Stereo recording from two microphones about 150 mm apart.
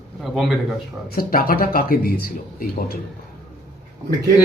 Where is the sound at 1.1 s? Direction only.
80° left.